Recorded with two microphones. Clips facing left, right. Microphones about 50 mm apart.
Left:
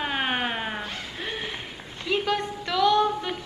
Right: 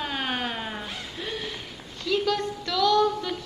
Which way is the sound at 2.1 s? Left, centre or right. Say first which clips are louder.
Even; left.